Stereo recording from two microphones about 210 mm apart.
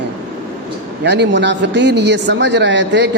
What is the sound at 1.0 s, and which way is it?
A man's voice, 55° right (ahead or behind).